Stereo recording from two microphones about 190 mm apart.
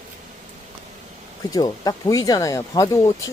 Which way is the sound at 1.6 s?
20° left (ahead or behind).